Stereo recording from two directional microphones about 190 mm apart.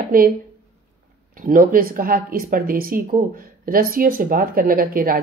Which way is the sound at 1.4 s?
45° right (ahead or behind).